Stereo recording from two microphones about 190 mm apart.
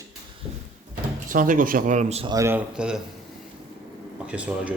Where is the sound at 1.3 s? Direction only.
45° right (ahead or behind).